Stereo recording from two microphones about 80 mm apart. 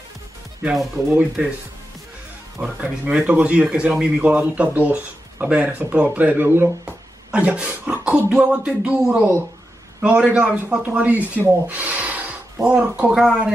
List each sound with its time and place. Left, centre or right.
1.1 s speech: centre
2.6 s speech: centre; by 6.7 s right
7.2 s speech: centre
11.6 s rub: centre
12.6 s speech: centre